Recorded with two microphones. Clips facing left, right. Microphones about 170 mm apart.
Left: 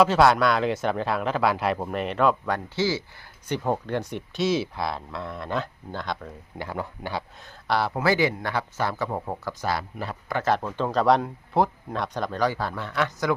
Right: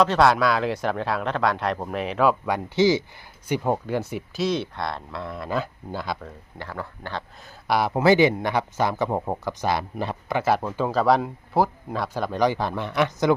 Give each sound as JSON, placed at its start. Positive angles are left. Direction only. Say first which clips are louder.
{"t": 0.0, "sound": "speech", "louder": "even", "side_deg": 0}
{"t": 2.7, "sound": "speech", "louder": "right 10 dB", "side_deg": -20}
{"t": 6.6, "sound": "speech", "louder": "left 2 dB", "side_deg": 15}
{"t": 7.4, "sound": "speech", "louder": "right 3 dB", "side_deg": -15}
{"t": 10.4, "sound": "speech", "louder": "right 1 dB", "side_deg": -10}